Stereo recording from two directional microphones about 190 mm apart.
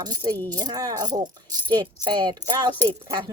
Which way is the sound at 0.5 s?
20° right (ahead or behind).